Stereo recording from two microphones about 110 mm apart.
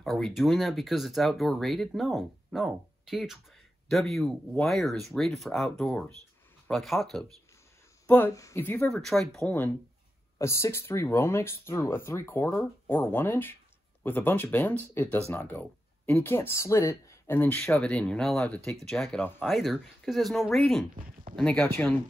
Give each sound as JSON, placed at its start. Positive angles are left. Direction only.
{"t": 0.0, "sound": "speech", "side_deg": 0}
{"t": 8.3, "sound": "speech", "side_deg": 30}
{"t": 8.9, "sound": "speech", "side_deg": 5}
{"t": 10.4, "sound": "speech", "side_deg": 25}